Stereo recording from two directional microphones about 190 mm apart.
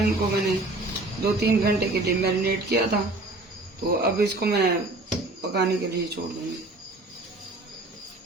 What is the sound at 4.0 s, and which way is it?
A woman's voice, 60° right (ahead or behind).